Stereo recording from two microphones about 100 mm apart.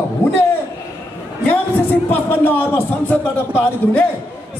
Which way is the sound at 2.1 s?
20° left (ahead or behind).